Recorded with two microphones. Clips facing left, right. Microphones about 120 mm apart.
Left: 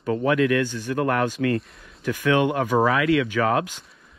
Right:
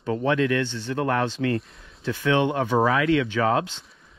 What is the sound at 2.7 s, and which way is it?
Speech, 25° right (ahead or behind).